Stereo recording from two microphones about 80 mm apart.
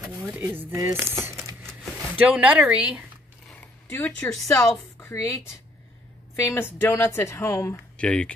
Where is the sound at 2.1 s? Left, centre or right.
Centre.